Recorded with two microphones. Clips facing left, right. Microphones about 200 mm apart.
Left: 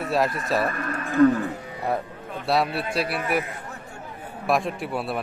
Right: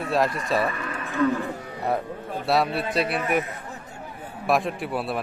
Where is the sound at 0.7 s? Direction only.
50° left (ahead or behind).